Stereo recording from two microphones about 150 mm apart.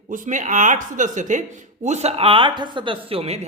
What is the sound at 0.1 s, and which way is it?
A man's voice, 60° right (ahead or behind).